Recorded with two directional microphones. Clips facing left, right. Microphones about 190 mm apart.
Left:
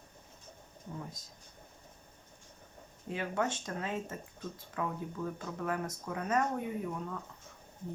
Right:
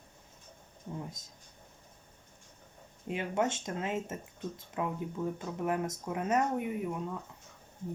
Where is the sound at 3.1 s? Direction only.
20° right (ahead or behind).